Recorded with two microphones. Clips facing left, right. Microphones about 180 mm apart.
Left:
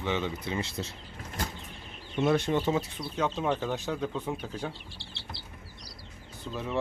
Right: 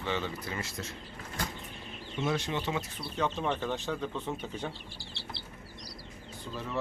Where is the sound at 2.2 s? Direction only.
55° left (ahead or behind).